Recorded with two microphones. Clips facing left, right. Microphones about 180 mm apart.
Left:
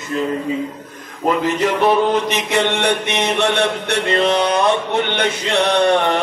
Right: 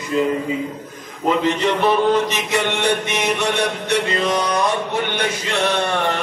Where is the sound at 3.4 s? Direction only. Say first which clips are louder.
Left 3 dB; 65° left (ahead or behind).